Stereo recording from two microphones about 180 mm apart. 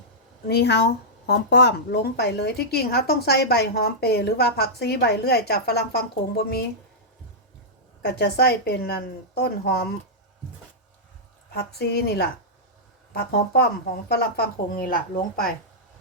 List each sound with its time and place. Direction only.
0.4 s a woman's voice: 65° left (ahead or behind)
8.0 s a woman's voice: 60° left (ahead or behind)
11.5 s a woman's voice: 60° left (ahead or behind)